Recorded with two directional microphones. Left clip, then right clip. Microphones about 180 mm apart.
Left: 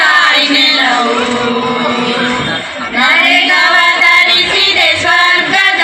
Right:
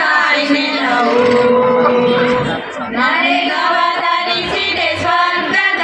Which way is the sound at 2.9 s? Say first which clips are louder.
Left 6 dB; 30° right (ahead or behind).